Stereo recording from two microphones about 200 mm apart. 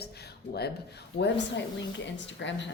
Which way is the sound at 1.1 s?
55° left (ahead or behind).